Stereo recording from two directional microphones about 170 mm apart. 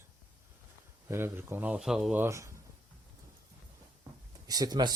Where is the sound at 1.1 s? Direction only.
15° right (ahead or behind).